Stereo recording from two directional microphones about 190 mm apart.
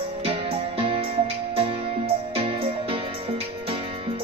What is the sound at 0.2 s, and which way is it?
Music, 30° right (ahead or behind).